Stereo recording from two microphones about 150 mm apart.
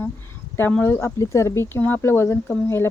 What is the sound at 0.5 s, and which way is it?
Speech, 15° left (ahead or behind).